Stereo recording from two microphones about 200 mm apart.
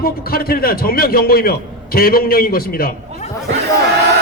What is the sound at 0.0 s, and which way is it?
A man's voice, 50° left (ahead or behind).